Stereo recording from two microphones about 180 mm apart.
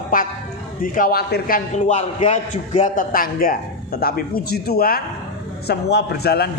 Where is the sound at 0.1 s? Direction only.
50° left (ahead or behind).